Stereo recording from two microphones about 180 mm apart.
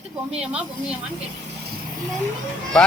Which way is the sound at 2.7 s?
5° left (ahead or behind).